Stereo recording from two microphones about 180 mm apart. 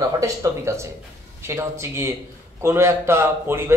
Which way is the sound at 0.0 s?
15° right (ahead or behind).